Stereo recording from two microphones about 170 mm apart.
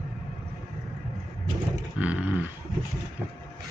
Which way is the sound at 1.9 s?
10° right (ahead or behind).